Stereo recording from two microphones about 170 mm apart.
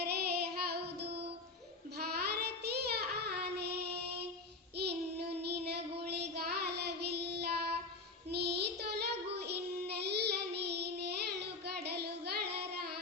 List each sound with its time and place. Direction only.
0.0 s child singing: 70° right (ahead or behind)